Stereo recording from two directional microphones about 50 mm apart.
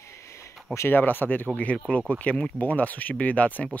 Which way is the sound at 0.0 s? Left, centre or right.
Left.